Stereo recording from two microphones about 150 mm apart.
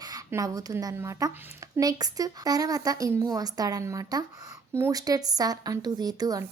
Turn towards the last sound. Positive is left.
turn(degrees=-25)  # may be behind; listen again after turning